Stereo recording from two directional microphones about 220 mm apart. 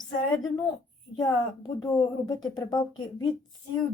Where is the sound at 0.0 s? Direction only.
20° left (ahead or behind).